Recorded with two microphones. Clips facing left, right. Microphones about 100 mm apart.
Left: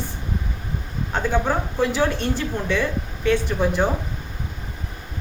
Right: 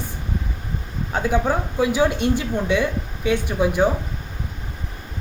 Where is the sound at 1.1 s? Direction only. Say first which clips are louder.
Right 1 dB; 10° right (ahead or behind).